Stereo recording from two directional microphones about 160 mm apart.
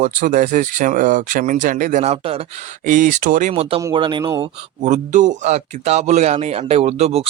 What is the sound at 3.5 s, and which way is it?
A man's voice, 35° right (ahead or behind).